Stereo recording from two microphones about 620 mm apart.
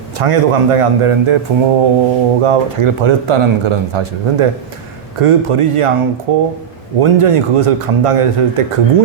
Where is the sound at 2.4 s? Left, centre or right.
Right.